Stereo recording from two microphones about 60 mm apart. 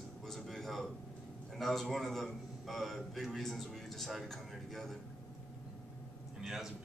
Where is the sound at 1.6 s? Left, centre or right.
Centre.